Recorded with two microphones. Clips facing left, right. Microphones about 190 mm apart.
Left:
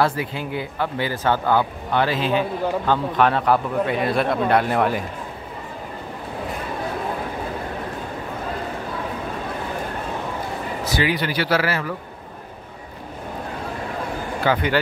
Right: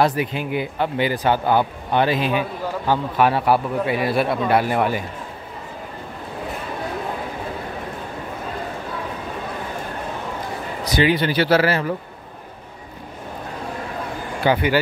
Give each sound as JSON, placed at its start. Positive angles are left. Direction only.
{"t": 0.0, "sound": "speech", "side_deg": -20}
{"t": 11.0, "sound": "speech", "side_deg": -25}
{"t": 14.4, "sound": "speech", "side_deg": -15}